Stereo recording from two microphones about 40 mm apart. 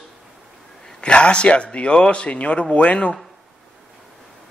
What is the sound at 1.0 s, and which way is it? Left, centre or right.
Speech, left.